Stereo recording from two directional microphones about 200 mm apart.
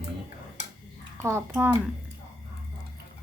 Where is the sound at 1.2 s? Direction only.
10° right (ahead or behind).